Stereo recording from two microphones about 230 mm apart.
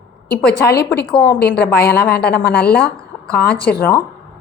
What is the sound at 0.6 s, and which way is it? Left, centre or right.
A woman's voice, left.